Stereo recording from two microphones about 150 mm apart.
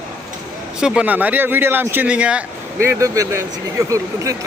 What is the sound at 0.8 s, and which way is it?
Speech, 5° right (ahead or behind).